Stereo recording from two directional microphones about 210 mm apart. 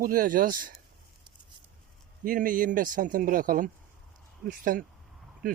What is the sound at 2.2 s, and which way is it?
Speech, 40° right (ahead or behind).